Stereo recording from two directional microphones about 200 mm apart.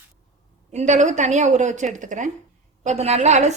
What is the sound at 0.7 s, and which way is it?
A woman's voice, 35° right (ahead or behind).